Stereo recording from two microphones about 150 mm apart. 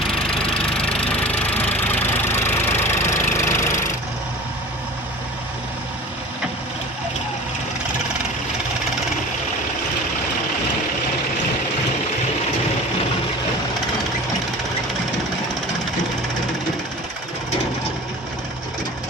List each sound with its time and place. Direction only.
0.7 s engine: 5° left (ahead or behind)
1.2 s vehicle: 10° left (ahead or behind)
2.2 s engine: 15° left (ahead or behind)